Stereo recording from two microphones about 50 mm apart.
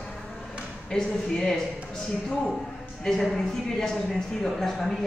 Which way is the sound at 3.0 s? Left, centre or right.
Centre.